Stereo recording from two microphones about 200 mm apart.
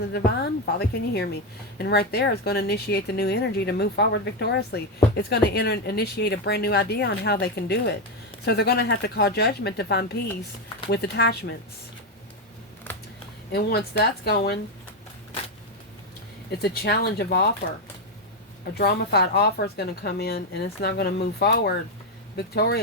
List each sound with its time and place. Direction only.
0.1 s speech: 50° left (ahead or behind)
12.9 s typing: 10° left (ahead or behind)
13.5 s speech: 50° left (ahead or behind)
16.5 s speech: 55° left (ahead or behind)
18.8 s speech: 55° left (ahead or behind)